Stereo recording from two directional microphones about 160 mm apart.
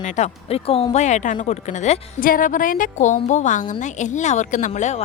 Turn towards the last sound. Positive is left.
turn(degrees=45)  # may be behind; listen again after turning